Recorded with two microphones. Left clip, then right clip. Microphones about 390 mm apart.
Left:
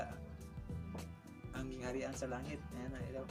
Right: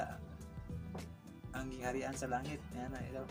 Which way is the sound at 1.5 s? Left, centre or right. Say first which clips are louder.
Right 3 dB; left.